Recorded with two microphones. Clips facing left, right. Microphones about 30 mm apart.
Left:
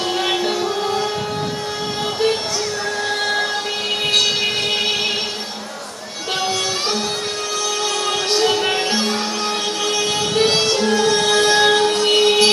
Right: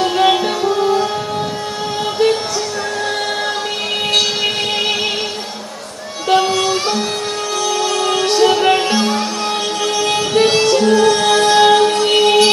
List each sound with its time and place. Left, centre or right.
0.2 s music: centre
6.4 s music: centre
8.4 s music: centre
10.5 s music: centre